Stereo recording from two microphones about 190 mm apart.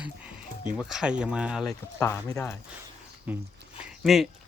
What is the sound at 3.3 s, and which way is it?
Speech, 5° right (ahead or behind).